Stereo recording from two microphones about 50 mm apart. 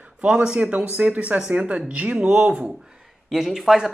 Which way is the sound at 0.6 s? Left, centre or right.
Right.